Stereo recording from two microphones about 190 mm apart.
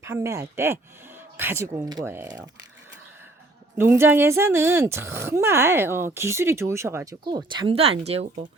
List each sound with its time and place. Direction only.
0.0 s speech: 15° right (ahead or behind)
3.8 s speech: 15° right (ahead or behind); by 8.4 s 35° right (ahead or behind)